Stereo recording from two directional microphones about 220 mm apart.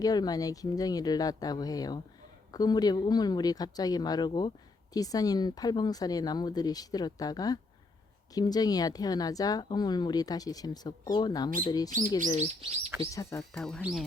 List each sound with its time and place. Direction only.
0.0 s speech: 15° left (ahead or behind)
13.0 s speech: 15° left (ahead or behind)
13.5 s speech: 5° left (ahead or behind)